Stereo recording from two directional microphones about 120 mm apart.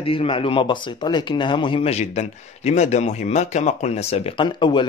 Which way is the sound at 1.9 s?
70° left (ahead or behind).